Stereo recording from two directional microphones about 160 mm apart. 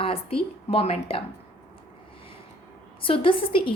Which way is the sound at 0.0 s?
35° left (ahead or behind).